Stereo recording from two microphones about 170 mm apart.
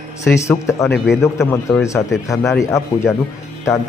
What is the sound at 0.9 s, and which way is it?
Speech, 5° right (ahead or behind).